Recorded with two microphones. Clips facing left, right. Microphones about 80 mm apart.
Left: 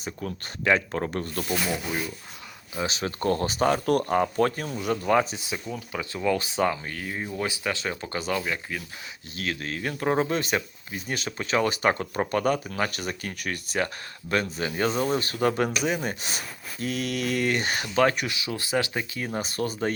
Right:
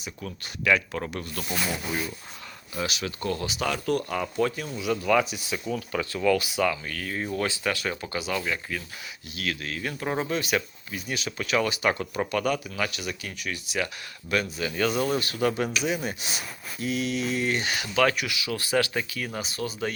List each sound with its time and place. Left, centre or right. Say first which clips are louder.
0.0 s speech: left 4 dB; left
2.7 s speech: left 2 dB; left
5.4 s speech: right 3 dB; left
8.1 s speech: left 2 dB; left
16.8 s mantra: right 1 dB; left
18.0 s speech: left 1 dB; left
19.4 s mantra: left 4 dB; left